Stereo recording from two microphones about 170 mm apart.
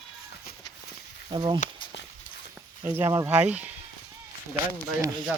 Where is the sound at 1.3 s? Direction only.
25° right (ahead or behind).